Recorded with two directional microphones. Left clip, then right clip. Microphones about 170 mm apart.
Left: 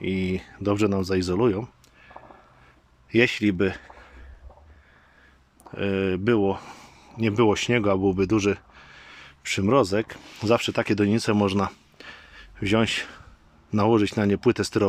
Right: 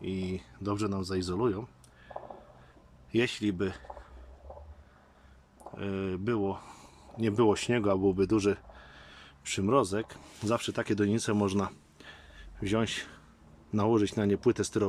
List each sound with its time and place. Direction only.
0.0 s speech: 15° left (ahead or behind)
5.7 s speech: 15° left (ahead or behind)
7.1 s speech: centre (ahead or behind)